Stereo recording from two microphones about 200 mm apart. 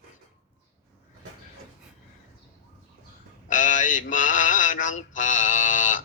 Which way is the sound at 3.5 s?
40° left (ahead or behind).